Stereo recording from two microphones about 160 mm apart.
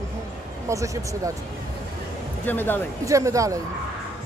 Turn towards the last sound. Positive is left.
turn(degrees=-20)  # may be behind; listen again after turning